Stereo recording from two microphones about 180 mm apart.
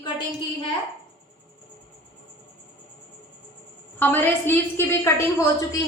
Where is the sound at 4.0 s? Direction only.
10° left (ahead or behind).